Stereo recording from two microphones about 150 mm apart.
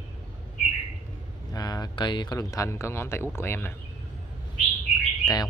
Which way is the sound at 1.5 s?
25° left (ahead or behind).